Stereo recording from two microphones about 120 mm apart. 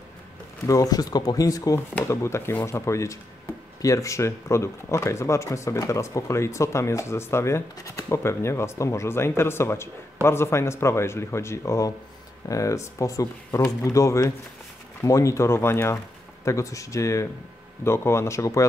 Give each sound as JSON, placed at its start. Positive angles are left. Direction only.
{"t": 0.7, "sound": "speech", "side_deg": 30}